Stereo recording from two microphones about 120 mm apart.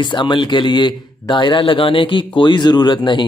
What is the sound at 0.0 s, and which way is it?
A man's voice, 40° left (ahead or behind).